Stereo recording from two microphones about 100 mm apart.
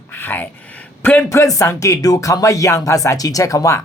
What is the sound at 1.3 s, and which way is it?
Speech, 30° left (ahead or behind).